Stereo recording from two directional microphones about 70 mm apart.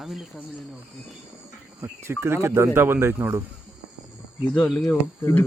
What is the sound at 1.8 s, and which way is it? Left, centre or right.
Speech, right.